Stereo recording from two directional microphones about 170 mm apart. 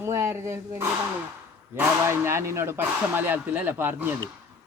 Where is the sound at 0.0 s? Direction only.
15° right (ahead or behind).